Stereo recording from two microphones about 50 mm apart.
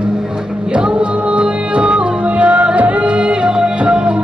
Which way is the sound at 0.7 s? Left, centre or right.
Centre.